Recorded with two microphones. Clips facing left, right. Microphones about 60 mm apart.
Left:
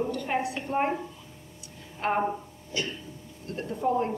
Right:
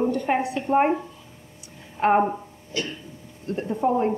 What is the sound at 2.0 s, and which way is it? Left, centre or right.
Speech, right.